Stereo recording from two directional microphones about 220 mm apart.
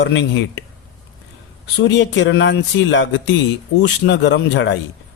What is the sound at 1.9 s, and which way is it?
A man's voice, 55° left (ahead or behind).